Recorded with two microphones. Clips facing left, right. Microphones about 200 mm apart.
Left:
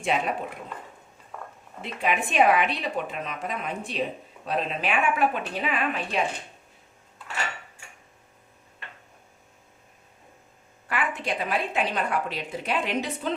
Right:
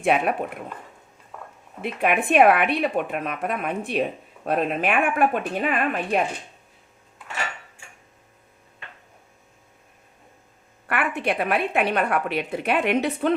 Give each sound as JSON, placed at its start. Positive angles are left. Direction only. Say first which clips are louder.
{"t": 0.0, "sound": "a woman's voice", "louder": "right 5 dB", "side_deg": -60}
{"t": 1.3, "sound": "a sound", "louder": "left 1 dB", "side_deg": 0}
{"t": 1.8, "sound": "a woman's voice", "louder": "right 5 dB", "side_deg": -60}
{"t": 10.8, "sound": "a woman's voice", "louder": "right 4 dB", "side_deg": -60}